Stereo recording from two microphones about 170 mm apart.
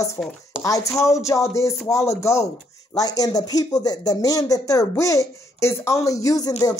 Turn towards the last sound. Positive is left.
turn(degrees=20)  # may be behind; listen again after turning